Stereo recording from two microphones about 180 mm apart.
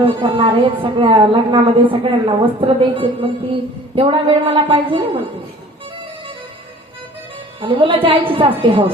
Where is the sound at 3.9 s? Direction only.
30° right (ahead or behind).